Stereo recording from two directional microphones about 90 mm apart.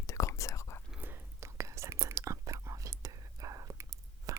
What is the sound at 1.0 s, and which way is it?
Whispering, 25° right (ahead or behind).